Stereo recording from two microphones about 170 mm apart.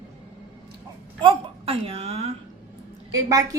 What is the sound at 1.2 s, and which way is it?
Speech, 30° right (ahead or behind).